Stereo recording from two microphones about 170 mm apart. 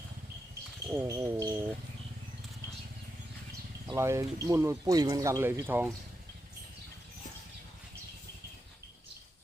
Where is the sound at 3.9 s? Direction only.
15° right (ahead or behind).